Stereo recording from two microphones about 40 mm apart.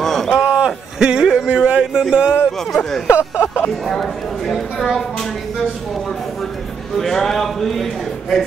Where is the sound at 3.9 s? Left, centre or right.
Centre.